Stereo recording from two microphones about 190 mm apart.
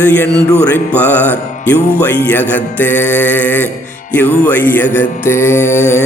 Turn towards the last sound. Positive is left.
turn(degrees=10)  # may be behind; listen again after turning